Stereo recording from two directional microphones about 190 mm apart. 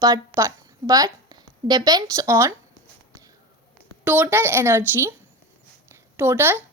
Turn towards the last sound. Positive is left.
turn(degrees=-10)  # may be behind; listen again after turning